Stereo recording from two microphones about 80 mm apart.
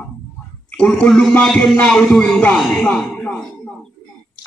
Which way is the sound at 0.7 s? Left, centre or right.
Centre.